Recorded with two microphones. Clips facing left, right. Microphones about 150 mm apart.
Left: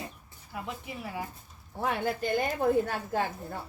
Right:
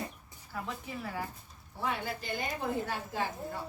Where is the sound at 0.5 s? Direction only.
15° left (ahead or behind).